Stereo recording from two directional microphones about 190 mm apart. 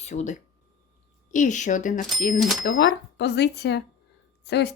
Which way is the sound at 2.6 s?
60° left (ahead or behind).